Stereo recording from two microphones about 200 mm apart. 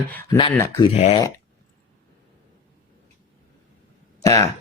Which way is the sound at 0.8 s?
30° left (ahead or behind).